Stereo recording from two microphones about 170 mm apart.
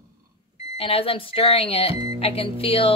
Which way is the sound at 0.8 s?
35° left (ahead or behind).